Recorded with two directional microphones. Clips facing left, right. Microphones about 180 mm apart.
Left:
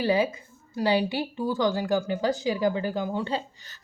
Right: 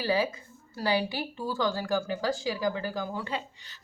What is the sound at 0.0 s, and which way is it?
A woman's voice, 20° left (ahead or behind).